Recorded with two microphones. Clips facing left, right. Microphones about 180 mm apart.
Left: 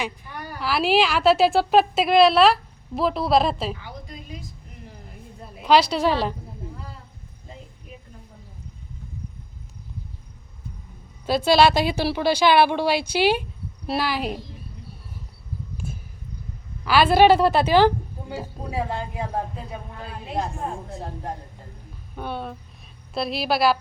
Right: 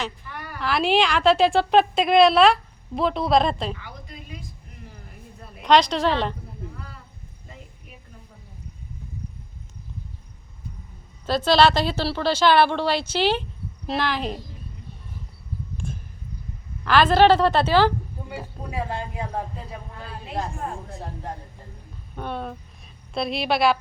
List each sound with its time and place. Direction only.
0.6 s a woman's voice: 5° left (ahead or behind)
5.6 s a woman's voice: 5° left (ahead or behind)
11.3 s a woman's voice: 10° left (ahead or behind)
15.8 s a sound: 5° left (ahead or behind)
16.8 s a woman's voice: 10° left (ahead or behind)
18.3 s speech: 25° left (ahead or behind)
22.1 s a woman's voice: 5° left (ahead or behind)